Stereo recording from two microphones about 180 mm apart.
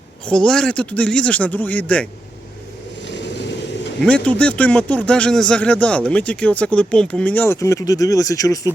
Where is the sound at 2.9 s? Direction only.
80° left.